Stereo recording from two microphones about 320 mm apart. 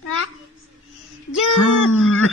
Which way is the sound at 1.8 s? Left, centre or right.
Left.